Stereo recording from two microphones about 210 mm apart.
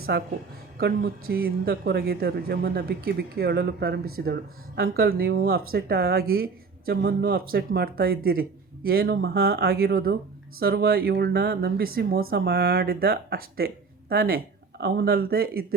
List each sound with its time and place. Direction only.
0.1 s speech: 55° right (ahead or behind)